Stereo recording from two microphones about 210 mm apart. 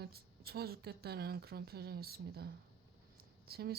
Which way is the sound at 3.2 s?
50° right (ahead or behind).